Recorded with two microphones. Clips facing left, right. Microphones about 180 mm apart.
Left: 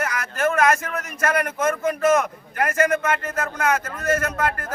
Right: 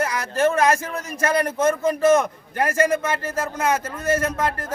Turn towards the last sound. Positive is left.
turn(degrees=-30)  # may be behind; listen again after turning